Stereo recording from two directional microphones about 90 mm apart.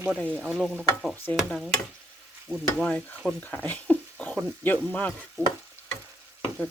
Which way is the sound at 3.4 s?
20° left (ahead or behind).